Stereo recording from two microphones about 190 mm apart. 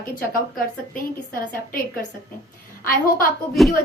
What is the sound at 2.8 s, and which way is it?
Speech, 50° left (ahead or behind).